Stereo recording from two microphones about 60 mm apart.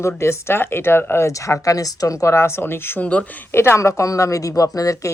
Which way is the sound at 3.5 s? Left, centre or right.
Left.